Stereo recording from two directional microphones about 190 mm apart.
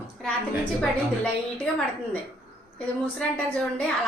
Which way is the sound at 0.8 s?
5° left (ahead or behind).